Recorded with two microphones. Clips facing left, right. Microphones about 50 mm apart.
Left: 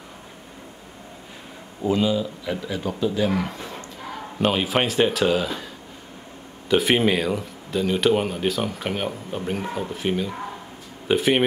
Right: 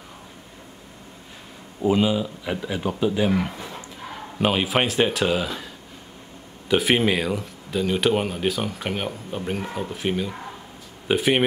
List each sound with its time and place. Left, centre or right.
1.9 s a man's voice: centre
3.3 s speech: centre
6.7 s speech: centre